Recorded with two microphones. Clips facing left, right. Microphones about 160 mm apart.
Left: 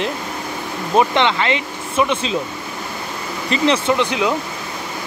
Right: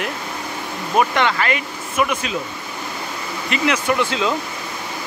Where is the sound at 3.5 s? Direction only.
30° left (ahead or behind).